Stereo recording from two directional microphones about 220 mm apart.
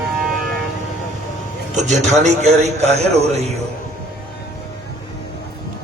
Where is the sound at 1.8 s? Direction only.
30° right (ahead or behind).